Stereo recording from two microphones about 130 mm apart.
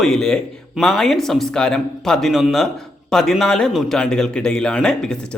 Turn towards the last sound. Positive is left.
turn(degrees=5)  # may be behind; listen again after turning